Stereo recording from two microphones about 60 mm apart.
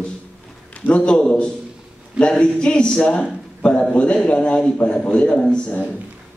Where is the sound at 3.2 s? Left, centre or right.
Centre.